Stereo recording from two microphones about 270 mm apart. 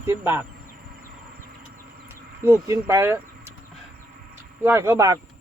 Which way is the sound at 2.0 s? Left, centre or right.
Centre.